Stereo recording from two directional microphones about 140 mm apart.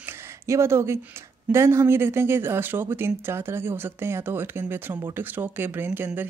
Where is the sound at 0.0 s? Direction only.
20° right (ahead or behind).